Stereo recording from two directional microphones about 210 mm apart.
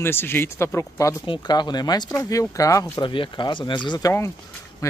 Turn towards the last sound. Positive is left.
turn(degrees=20)  # may be behind; listen again after turning